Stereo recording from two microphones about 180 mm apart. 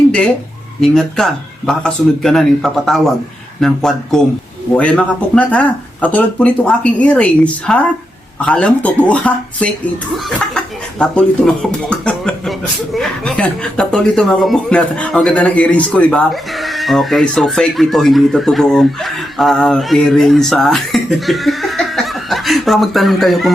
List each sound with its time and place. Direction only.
0.8 s speech: centre (ahead or behind)
11.0 s speech: 5° left (ahead or behind)